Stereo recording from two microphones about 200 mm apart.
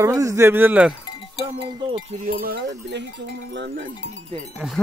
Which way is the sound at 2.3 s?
50° right (ahead or behind).